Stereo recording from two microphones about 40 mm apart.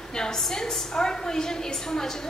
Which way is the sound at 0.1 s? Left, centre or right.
Centre.